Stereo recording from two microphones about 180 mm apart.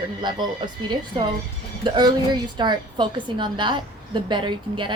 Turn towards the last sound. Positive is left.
turn(degrees=-25)  # may be behind; listen again after turning